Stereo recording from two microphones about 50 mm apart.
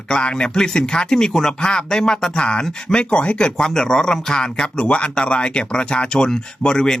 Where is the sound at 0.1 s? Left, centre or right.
Centre.